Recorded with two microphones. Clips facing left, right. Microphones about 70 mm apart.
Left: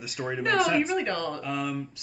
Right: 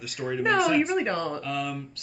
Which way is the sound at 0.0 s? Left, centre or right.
Centre.